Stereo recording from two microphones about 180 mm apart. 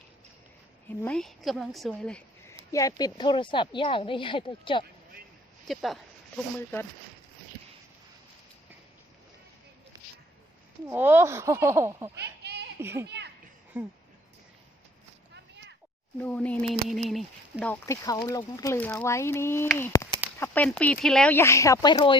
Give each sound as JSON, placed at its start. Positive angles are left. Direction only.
{"t": 1.0, "sound": "a woman's voice", "side_deg": 5}
{"t": 2.7, "sound": "a woman's voice", "side_deg": 20}
{"t": 5.6, "sound": "a sound", "side_deg": 0}
{"t": 10.8, "sound": "speech", "side_deg": -10}
{"t": 12.2, "sound": "a sound", "side_deg": -65}
{"t": 12.8, "sound": "speech", "side_deg": -15}
{"t": 13.1, "sound": "children playing", "side_deg": -70}
{"t": 13.7, "sound": "speech", "side_deg": -10}
{"t": 16.1, "sound": "a woman's voice", "side_deg": 5}
{"t": 17.8, "sound": "a woman's voice", "side_deg": 20}